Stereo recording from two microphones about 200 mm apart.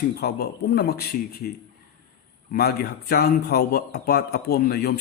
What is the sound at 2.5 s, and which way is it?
A man's voice, 50° left (ahead or behind).